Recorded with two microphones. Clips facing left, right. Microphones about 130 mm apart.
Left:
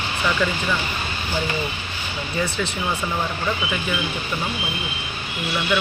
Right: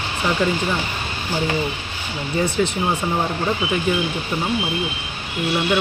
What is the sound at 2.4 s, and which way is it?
Speech, 40° right (ahead or behind).